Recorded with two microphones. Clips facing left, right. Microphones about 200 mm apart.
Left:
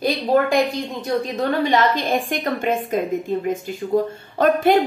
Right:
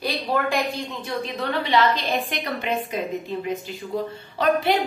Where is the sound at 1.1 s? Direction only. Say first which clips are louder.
Left 7 dB; 45° left (ahead or behind).